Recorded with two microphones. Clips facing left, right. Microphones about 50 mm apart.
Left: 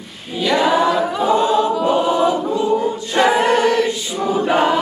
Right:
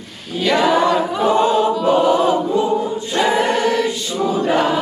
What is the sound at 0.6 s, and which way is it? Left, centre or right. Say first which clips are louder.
Choir: even; centre.